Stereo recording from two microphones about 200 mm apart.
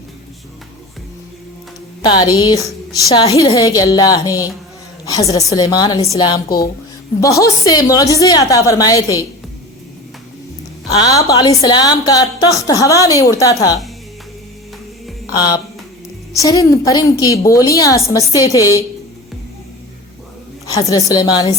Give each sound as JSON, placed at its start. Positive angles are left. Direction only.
{"t": 2.0, "sound": "a woman's voice", "side_deg": 20}
{"t": 11.0, "sound": "a woman's voice", "side_deg": 20}
{"t": 15.4, "sound": "a woman's voice", "side_deg": 20}
{"t": 20.7, "sound": "a woman's voice", "side_deg": 20}